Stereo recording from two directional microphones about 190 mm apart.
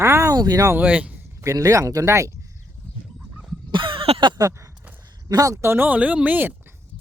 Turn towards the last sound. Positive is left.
turn(degrees=-10)  # may be behind; listen again after turning